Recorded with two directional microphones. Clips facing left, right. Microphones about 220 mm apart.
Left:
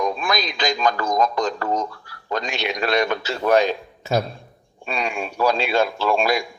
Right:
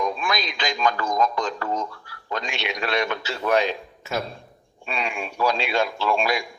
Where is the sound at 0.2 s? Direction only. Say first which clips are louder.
Left 3 dB; 40° left (ahead or behind).